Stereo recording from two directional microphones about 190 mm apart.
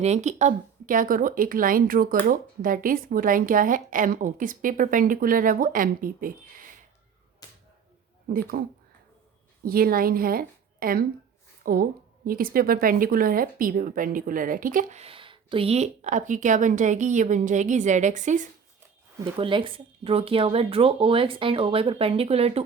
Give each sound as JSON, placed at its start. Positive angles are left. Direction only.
{"t": 0.0, "sound": "speech", "side_deg": -35}
{"t": 7.4, "sound": "a sound", "side_deg": 20}
{"t": 8.3, "sound": "speech", "side_deg": -50}
{"t": 9.6, "sound": "a woman's voice", "side_deg": -50}
{"t": 19.2, "sound": "speech", "side_deg": -25}